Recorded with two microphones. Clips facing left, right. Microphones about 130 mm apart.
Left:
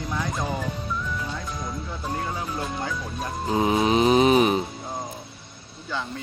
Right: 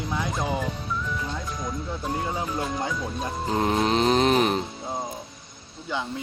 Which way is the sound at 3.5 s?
5° left (ahead or behind).